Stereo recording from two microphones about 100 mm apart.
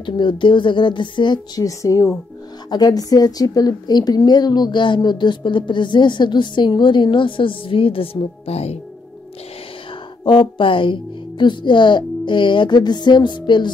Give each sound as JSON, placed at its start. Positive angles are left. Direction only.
{"t": 0.0, "sound": "a woman's voice", "side_deg": 55}
{"t": 1.6, "sound": "a woman's voice", "side_deg": 35}
{"t": 10.2, "sound": "a woman's voice", "side_deg": 55}